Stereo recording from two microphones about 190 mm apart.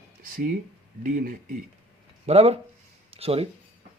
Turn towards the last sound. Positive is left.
turn(degrees=-30)  # may be behind; listen again after turning